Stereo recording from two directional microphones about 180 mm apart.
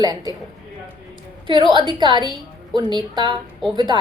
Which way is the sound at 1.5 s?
25° right (ahead or behind).